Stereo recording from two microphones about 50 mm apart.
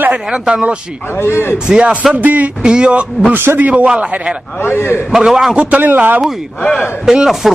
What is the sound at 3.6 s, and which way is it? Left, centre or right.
Speech, right.